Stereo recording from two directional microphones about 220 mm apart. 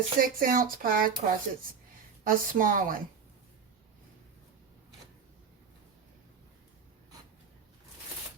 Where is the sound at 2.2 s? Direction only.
40° right (ahead or behind).